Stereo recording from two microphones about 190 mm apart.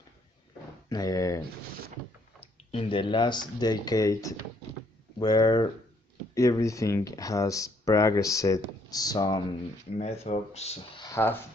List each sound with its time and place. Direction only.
0.9 s speech: 20° left (ahead or behind)
2.4 s speech: 30° left (ahead or behind)
10.0 s speech: 35° left (ahead or behind)
11.0 s a sound: 15° left (ahead or behind)